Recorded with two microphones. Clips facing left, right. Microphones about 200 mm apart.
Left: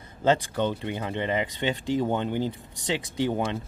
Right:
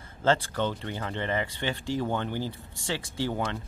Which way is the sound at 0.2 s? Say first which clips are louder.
Left 2 dB; 15° left (ahead or behind).